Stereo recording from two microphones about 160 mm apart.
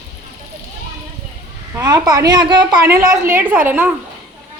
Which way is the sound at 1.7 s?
25° right (ahead or behind).